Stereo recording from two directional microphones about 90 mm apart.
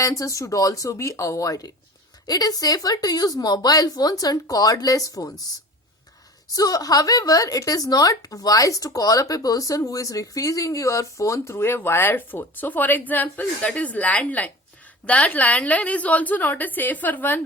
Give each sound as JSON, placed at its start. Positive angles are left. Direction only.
{"t": 0.0, "sound": "a woman's voice", "side_deg": 40}
{"t": 6.5, "sound": "a woman's voice", "side_deg": 40}